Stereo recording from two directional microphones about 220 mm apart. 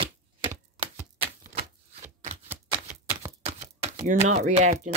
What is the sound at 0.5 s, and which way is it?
Chopping, 15° right (ahead or behind).